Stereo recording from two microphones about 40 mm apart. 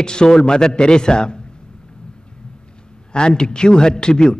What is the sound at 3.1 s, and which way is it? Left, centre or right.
A man's voice, left.